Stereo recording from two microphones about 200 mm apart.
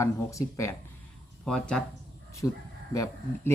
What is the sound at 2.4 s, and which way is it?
Speech, 15° left (ahead or behind).